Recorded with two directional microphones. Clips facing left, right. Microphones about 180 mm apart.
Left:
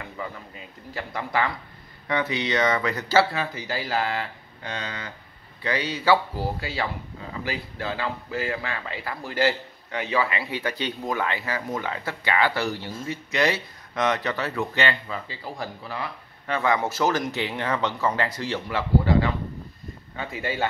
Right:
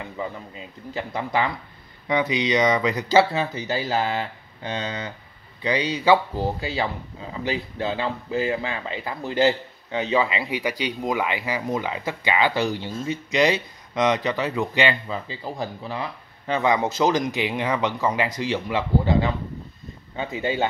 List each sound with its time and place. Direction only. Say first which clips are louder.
0.0 s speech: right 4 dB; 20° right (ahead or behind)